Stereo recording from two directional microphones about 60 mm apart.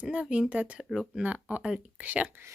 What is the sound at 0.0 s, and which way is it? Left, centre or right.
Speech, centre.